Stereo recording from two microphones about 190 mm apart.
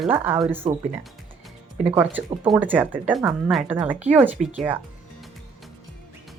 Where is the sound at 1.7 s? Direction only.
35° right (ahead or behind).